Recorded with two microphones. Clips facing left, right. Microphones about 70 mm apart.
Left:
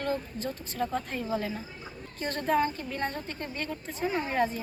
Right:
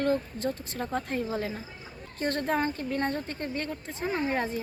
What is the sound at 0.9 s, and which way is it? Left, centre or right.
Speech, right.